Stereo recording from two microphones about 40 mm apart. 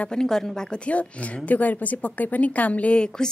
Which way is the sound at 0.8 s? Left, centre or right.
Left.